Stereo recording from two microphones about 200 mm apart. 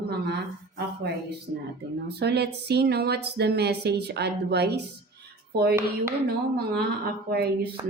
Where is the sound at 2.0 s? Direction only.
55° right (ahead or behind).